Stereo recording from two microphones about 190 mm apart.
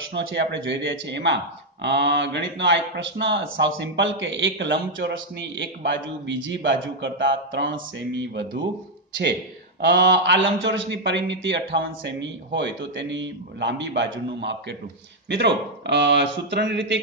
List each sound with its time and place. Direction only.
0.1 s speech: 70° right (ahead or behind)
9.8 s speech: 70° right (ahead or behind)